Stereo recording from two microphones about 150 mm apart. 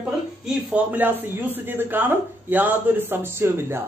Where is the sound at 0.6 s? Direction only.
10° right (ahead or behind).